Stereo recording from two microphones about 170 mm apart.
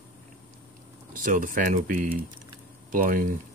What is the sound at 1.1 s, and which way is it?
Speech, 55° right (ahead or behind).